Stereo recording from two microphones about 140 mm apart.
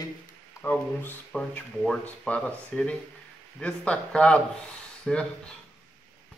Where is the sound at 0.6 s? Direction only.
15° left (ahead or behind).